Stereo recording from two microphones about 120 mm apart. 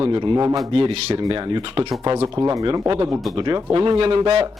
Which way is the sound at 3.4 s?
35° right (ahead or behind).